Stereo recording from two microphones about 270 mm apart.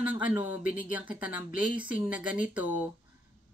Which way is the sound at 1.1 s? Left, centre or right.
Centre.